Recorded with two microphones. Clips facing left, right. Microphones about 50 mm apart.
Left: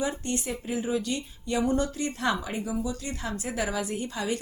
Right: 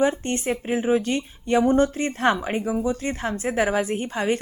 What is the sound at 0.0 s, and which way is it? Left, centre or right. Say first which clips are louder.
A woman's voice: right 8 dB; right.